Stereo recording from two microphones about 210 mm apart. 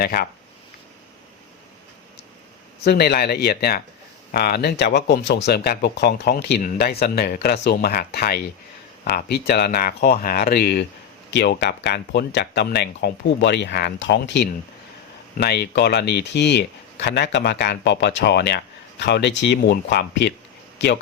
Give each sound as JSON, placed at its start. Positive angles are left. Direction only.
{"t": 0.0, "sound": "speech", "side_deg": 45}
{"t": 2.8, "sound": "speech", "side_deg": 50}